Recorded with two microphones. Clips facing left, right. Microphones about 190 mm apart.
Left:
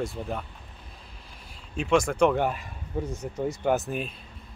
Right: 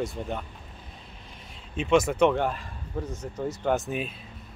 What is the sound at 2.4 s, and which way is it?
Speech, 10° left (ahead or behind).